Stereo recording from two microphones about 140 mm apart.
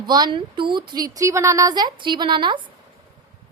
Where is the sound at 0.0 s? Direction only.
30° right (ahead or behind).